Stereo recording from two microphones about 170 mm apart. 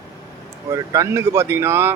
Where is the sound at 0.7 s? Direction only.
20° right (ahead or behind).